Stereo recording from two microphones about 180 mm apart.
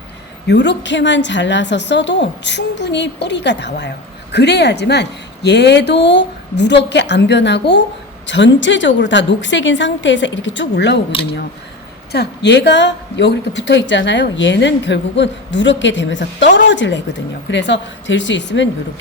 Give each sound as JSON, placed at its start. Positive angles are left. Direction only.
{"t": 0.4, "sound": "a woman's voice", "side_deg": 75}
{"t": 8.3, "sound": "a woman's voice", "side_deg": 85}
{"t": 12.1, "sound": "a woman's voice", "side_deg": 70}